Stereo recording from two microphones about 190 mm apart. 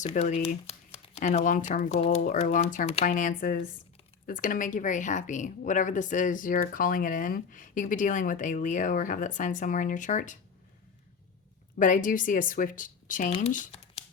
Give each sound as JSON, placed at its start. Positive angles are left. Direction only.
{"t": 0.0, "sound": "a woman's voice", "side_deg": 40}
{"t": 11.8, "sound": "a woman's voice", "side_deg": 45}